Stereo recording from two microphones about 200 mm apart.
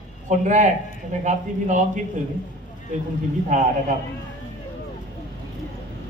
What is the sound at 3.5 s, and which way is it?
Speech, 40° right (ahead or behind).